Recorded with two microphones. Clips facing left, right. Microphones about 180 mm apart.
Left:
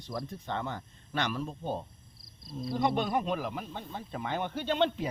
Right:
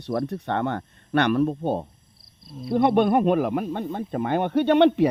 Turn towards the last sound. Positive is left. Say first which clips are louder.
# right 12 dB
turn(degrees=-65)  # may be behind; listen again after turning